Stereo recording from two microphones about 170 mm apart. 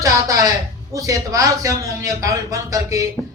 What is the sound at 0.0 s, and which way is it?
Speech, 20° right (ahead or behind).